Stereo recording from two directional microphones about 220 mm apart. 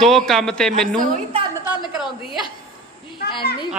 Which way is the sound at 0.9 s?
30° right (ahead or behind).